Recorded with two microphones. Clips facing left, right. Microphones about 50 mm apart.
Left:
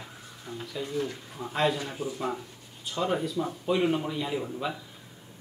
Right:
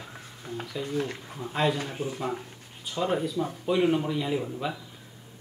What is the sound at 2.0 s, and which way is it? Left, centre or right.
Speech, right.